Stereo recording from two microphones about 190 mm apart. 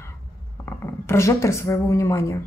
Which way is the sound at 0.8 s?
15° left (ahead or behind).